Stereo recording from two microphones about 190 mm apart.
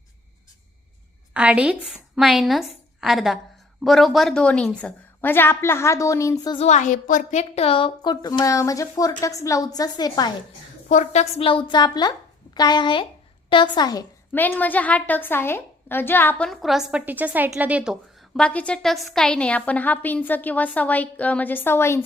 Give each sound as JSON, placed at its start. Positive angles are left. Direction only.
{"t": 1.3, "sound": "a woman's voice", "side_deg": -5}
{"t": 6.7, "sound": "a woman's voice", "side_deg": 40}
{"t": 10.8, "sound": "a woman's voice", "side_deg": 40}
{"t": 14.3, "sound": "a woman's voice", "side_deg": 10}
{"t": 18.3, "sound": "a woman's voice", "side_deg": 5}